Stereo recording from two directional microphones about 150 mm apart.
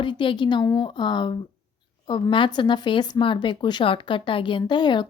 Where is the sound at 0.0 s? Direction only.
30° left (ahead or behind).